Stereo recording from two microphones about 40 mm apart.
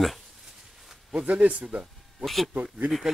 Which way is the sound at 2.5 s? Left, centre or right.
Right.